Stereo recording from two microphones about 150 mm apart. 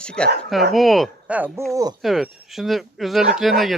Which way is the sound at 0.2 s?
5° left (ahead or behind).